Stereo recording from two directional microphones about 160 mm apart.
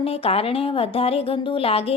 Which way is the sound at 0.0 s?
35° left (ahead or behind).